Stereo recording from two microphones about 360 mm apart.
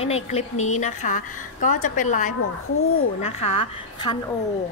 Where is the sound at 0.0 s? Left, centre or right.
Centre.